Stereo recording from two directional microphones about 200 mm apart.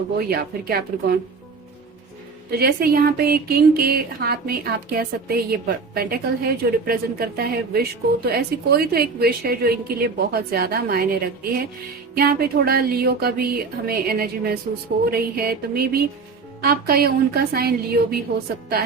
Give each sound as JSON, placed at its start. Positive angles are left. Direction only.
{"t": 0.2, "sound": "speech", "side_deg": -50}
{"t": 2.5, "sound": "speech", "side_deg": -50}